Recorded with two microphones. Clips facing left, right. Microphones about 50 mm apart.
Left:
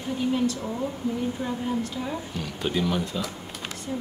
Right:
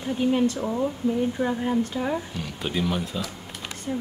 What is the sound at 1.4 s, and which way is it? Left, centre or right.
Speech, right.